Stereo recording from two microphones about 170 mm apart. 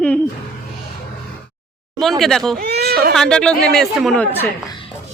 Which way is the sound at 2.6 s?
70° right (ahead or behind).